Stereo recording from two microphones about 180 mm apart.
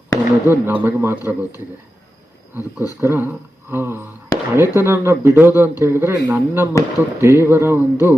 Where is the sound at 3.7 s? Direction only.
10° right (ahead or behind).